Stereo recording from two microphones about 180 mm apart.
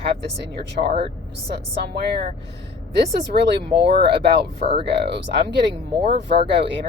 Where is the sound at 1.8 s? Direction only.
65° right (ahead or behind).